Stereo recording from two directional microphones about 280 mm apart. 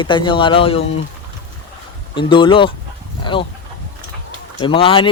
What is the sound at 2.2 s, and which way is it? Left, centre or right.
Speech, centre.